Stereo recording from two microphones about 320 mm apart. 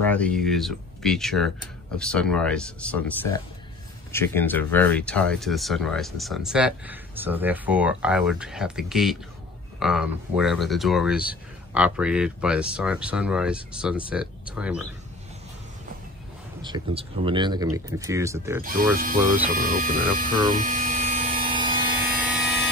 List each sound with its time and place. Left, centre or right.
0.0 s speech: centre
16.6 s speech: centre
18.6 s speech: right
19.5 s a sound: right; by 22.6 s centre